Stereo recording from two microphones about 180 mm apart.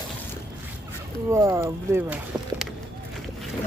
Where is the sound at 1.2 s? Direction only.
15° right (ahead or behind).